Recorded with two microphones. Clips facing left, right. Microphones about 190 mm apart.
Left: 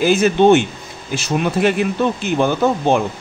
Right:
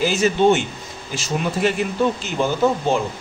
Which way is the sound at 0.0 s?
55° left (ahead or behind).